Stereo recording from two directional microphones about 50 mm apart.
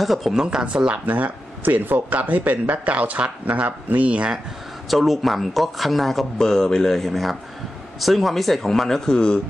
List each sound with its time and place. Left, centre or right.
0.0 s speech: centre
0.4 s speech: centre
1.0 s a man's voice: right
4.8 s speech: centre
6.3 s speech: centre